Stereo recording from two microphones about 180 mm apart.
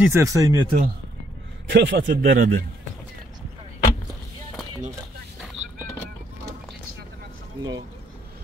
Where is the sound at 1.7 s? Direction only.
70° right (ahead or behind); by 2.5 s 55° right (ahead or behind).